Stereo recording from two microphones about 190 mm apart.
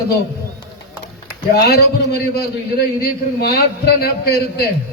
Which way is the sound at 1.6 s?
60° left (ahead or behind).